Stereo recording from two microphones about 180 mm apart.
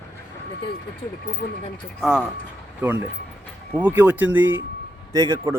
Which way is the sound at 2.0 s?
5° right (ahead or behind).